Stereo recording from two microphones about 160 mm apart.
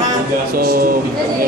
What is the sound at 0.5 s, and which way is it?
Speech, 70° right (ahead or behind).